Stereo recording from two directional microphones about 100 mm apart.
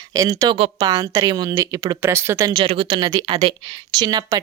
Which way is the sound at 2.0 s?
25° right (ahead or behind).